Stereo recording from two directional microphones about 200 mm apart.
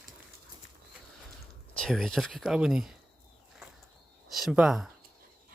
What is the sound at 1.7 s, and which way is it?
Speech, 5° left (ahead or behind).